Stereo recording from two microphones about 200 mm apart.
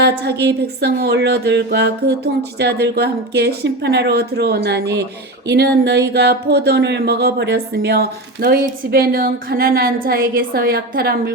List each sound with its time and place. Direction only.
0.0 s speech: 55° right (ahead or behind)